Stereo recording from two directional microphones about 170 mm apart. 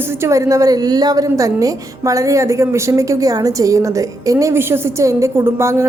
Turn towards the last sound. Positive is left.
turn(degrees=-15)  # may be behind; listen again after turning